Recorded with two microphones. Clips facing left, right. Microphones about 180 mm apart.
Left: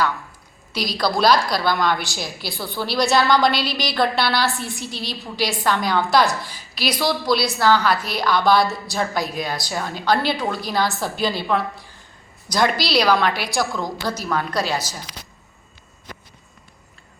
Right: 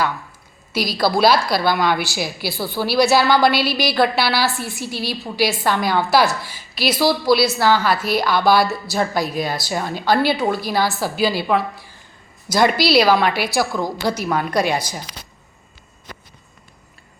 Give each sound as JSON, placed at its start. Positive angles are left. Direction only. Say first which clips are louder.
{"t": 0.7, "sound": "a woman's voice", "louder": "right 3 dB", "side_deg": -5}
{"t": 9.1, "sound": "a woman's voice", "louder": "right 3 dB", "side_deg": -45}
{"t": 9.4, "sound": "a woman's voice", "louder": "right 3 dB", "side_deg": -5}